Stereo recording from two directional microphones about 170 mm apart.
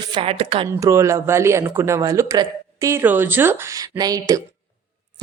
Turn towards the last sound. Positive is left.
turn(degrees=-20)  # may be behind; listen again after turning